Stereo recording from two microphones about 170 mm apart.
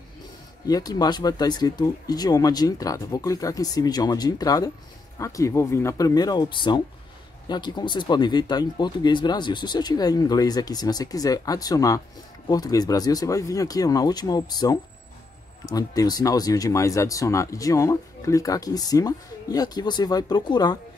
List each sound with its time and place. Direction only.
0.7 s speech: 20° left (ahead or behind)